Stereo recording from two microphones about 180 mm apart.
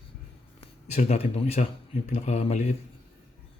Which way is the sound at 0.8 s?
40° left (ahead or behind).